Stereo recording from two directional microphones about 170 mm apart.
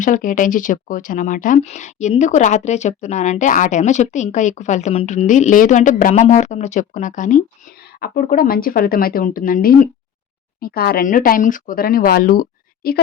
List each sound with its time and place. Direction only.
0.0 s speech: 50° left (ahead or behind)